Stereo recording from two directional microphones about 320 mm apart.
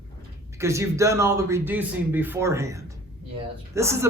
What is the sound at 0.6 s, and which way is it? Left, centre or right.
A man's voice, centre.